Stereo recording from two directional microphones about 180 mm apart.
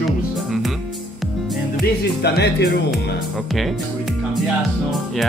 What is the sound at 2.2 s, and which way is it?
Speech, 65° left (ahead or behind).